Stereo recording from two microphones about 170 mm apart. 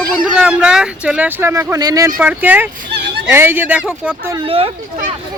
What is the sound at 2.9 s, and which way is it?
Speech, 70° right (ahead or behind).